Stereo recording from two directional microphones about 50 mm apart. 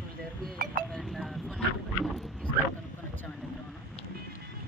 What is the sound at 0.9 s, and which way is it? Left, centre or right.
Speech, centre.